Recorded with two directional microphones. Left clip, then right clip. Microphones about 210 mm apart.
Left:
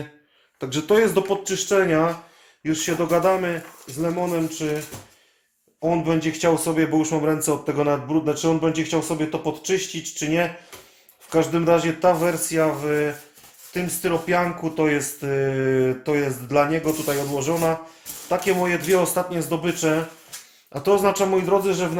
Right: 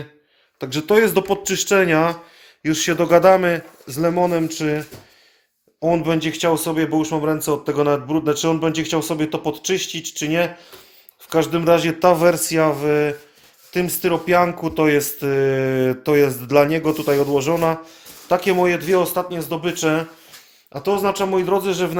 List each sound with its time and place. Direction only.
0.6 s speech: 25° right (ahead or behind); by 4.8 s 55° right (ahead or behind)
5.8 s speech: 50° right (ahead or behind)
19.0 s speech: 20° right (ahead or behind); by 20.1 s 40° right (ahead or behind)
20.7 s speech: 15° right (ahead or behind)